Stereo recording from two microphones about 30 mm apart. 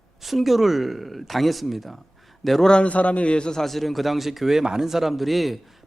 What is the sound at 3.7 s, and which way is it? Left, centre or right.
Speech, centre.